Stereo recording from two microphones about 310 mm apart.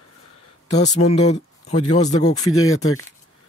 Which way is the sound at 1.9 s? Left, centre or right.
Centre.